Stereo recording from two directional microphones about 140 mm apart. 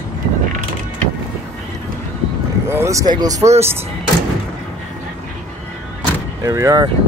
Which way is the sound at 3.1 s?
25° right (ahead or behind).